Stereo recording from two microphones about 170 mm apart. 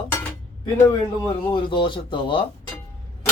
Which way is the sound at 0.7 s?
20° left (ahead or behind).